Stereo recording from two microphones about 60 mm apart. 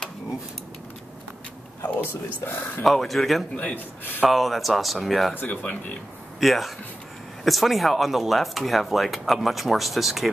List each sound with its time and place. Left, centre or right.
2.0 s speech: left
2.8 s speech: centre
3.5 s a man's voice: left
4.3 s speech: centre
5.3 s speech: left
6.4 s speech: centre